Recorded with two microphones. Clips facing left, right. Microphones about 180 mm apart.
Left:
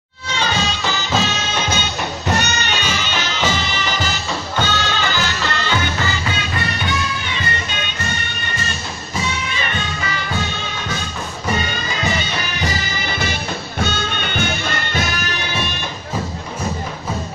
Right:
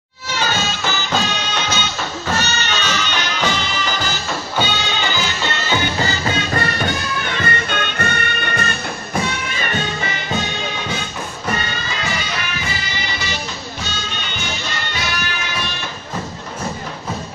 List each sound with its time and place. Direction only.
0.3 s music: 5° right (ahead or behind)
1.7 s music: 15° left (ahead or behind)
4.6 s music: 15° right (ahead or behind)
5.8 s music: 35° right (ahead or behind); by 9.7 s 50° right (ahead or behind)
12.0 s music: 25° left (ahead or behind); by 15.0 s 50° left (ahead or behind)